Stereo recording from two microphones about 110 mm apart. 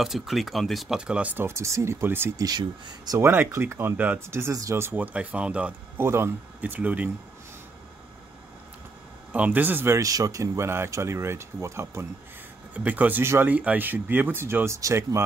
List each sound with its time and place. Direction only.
0.0 s speech: centre (ahead or behind)
6.0 s speech: 20° right (ahead or behind)
9.3 s speech: 15° right (ahead or behind)